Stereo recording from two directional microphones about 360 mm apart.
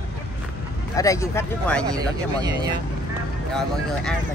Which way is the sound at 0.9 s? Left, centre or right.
Centre.